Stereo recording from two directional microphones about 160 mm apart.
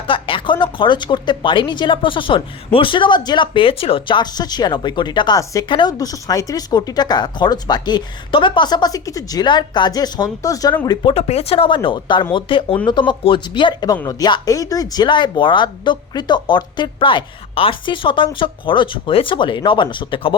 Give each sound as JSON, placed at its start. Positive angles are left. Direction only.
{"t": 0.1, "sound": "a woman's voice", "side_deg": 35}
{"t": 10.8, "sound": "a woman's voice", "side_deg": 35}